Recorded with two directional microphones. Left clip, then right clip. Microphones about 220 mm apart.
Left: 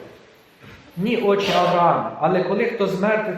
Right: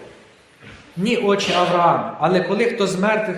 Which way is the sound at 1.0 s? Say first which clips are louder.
Right 1 dB; 45° right (ahead or behind).